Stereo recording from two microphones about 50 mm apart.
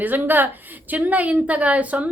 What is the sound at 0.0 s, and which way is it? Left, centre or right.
A woman's voice, right.